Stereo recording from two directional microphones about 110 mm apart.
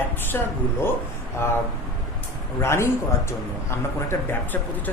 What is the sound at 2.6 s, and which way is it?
Speech, 25° left (ahead or behind).